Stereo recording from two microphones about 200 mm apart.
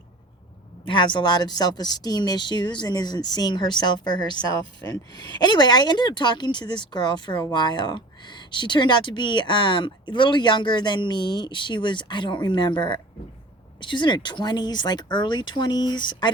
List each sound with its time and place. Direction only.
0.9 s speech: 25° left (ahead or behind)